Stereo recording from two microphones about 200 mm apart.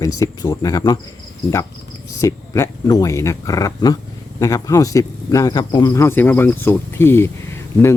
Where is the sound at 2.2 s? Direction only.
15° left (ahead or behind).